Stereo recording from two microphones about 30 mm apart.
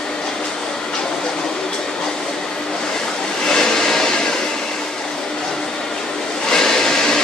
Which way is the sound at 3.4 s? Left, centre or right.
Centre.